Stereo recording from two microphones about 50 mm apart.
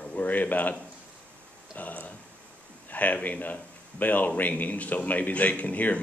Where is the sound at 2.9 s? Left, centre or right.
Left.